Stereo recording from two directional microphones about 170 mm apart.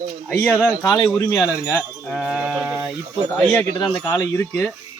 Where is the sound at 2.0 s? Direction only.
Centre (ahead or behind).